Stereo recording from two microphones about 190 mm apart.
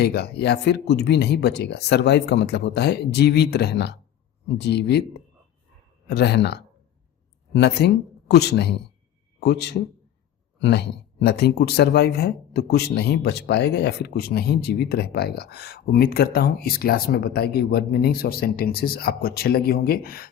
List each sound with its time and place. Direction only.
0.0 s speech: 60° left (ahead or behind)